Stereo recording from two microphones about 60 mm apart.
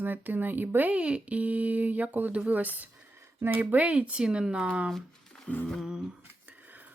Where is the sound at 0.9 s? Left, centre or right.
Centre.